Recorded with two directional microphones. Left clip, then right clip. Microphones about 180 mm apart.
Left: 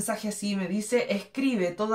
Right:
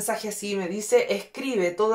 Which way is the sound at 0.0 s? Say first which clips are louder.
Right 3 dB; 30° right (ahead or behind).